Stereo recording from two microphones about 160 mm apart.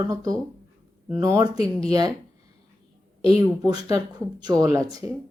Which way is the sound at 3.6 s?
25° right (ahead or behind).